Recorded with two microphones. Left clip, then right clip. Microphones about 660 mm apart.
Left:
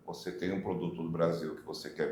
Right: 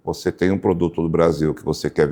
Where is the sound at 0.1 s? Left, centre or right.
Right.